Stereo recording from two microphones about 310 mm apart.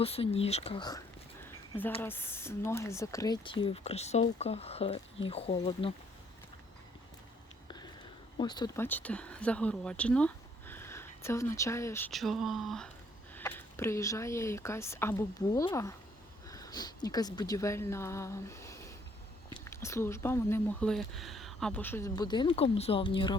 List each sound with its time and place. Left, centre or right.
0.0 s speech: centre
8.4 s speech: centre